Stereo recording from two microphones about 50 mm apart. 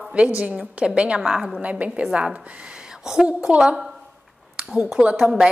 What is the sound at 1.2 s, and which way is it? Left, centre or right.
Speech, centre.